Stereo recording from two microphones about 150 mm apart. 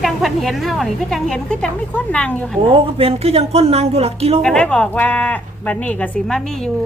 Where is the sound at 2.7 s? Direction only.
40° right (ahead or behind).